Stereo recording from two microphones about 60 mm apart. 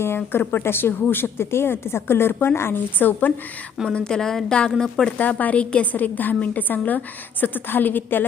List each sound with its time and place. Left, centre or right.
0.0 s speech: left
3.8 s a woman's voice: centre
5.1 s a woman's voice: left